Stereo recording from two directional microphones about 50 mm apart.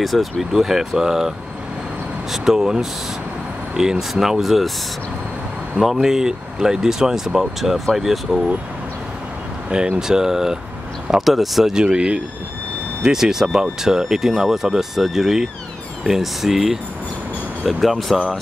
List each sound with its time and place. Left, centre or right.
0.0 s speech: centre
2.3 s speech: centre
5.8 s speech: centre
9.7 s speech: centre
11.8 s speech: right
13.0 s speech: centre